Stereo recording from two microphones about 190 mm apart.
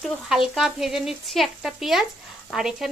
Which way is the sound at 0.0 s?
Centre (ahead or behind).